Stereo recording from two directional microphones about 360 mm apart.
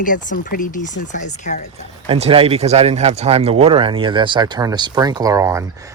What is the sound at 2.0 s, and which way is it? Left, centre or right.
Speech, centre.